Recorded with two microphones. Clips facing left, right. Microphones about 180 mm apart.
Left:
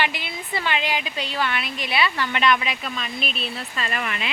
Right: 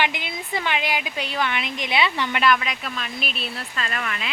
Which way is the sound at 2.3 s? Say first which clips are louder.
Even; 5° right (ahead or behind).